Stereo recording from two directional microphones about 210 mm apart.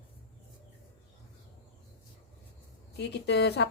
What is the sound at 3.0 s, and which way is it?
Speech, 55° left (ahead or behind).